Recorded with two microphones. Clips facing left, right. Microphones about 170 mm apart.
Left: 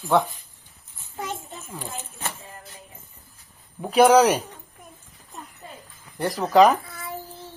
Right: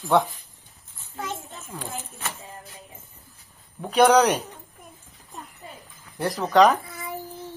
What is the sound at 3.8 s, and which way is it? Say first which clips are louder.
Speech: left 2 dB; 5° left (ahead or behind).